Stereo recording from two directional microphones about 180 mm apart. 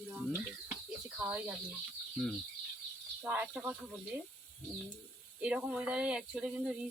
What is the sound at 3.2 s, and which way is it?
Speech, 10° right (ahead or behind).